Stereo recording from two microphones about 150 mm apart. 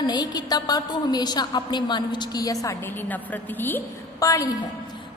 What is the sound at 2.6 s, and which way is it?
A woman's voice, 15° left (ahead or behind).